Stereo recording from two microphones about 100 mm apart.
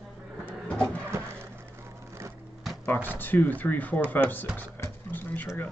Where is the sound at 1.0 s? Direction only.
25° right (ahead or behind).